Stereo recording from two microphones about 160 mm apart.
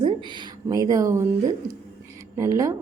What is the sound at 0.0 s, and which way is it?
A woman's voice, 30° right (ahead or behind).